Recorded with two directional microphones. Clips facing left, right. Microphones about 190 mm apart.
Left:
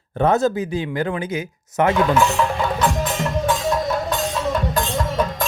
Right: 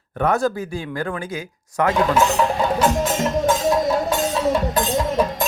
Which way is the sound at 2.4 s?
30° right (ahead or behind).